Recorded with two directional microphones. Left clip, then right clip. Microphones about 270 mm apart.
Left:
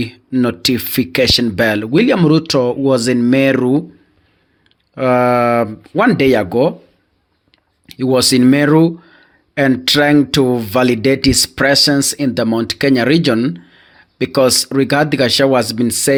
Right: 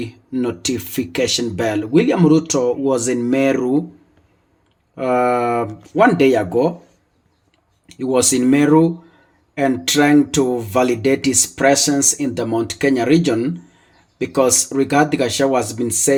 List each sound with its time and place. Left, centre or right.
0.0 s speech: left
4.9 s speech: left
7.9 s speech: left